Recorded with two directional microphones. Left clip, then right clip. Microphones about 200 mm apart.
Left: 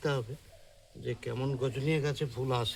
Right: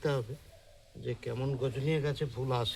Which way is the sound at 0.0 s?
10° left (ahead or behind).